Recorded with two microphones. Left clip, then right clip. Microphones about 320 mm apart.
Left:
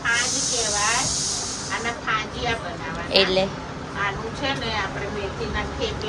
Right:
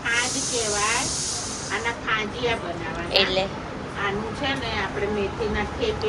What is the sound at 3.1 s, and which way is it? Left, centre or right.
Speech, centre.